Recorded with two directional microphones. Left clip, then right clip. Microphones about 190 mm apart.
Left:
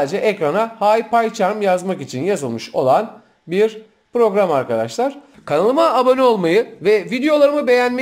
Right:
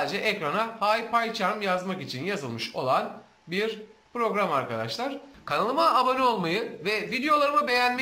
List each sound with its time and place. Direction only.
0.0 s speech: 35° left (ahead or behind)